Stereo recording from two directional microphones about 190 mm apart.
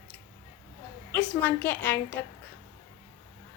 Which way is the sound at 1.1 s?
10° left (ahead or behind).